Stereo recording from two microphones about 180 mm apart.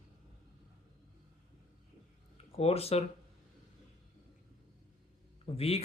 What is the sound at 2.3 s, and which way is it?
Speech, 35° left (ahead or behind).